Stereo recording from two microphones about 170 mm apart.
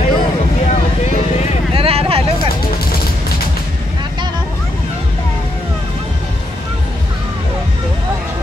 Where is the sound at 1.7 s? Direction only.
35° right (ahead or behind).